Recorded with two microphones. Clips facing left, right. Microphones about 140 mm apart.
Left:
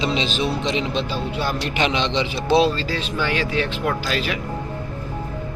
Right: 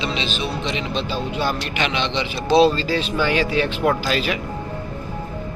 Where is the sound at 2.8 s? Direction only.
10° right (ahead or behind).